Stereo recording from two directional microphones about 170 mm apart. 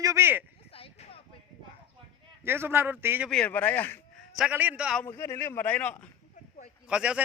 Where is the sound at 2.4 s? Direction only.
15° right (ahead or behind).